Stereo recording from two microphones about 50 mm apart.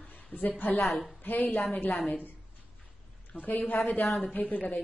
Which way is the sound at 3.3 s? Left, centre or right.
Left.